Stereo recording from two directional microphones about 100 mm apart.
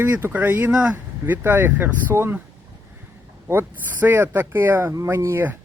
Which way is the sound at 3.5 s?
20° right (ahead or behind).